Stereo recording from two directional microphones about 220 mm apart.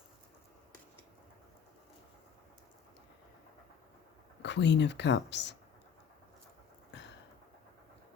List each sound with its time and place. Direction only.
4.4 s speech: 55° left (ahead or behind)